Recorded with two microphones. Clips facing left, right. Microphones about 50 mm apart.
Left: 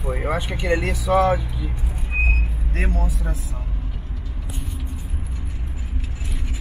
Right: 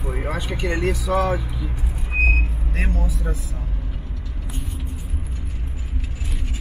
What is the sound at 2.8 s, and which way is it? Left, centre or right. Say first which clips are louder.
Speech: left 1 dB; left.